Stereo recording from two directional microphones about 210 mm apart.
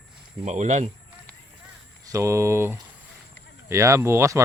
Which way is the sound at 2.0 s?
15° right (ahead or behind).